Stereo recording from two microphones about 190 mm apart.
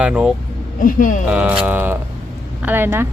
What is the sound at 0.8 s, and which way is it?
Speech, 45° left (ahead or behind).